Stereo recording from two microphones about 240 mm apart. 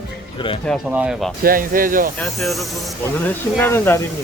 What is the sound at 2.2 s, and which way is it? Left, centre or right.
A man's voice, centre.